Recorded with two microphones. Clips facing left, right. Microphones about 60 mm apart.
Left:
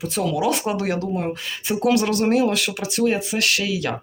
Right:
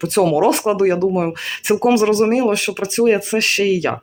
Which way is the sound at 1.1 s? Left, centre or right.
Right.